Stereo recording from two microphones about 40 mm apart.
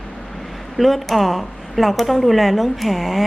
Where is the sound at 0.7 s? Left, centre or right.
Centre.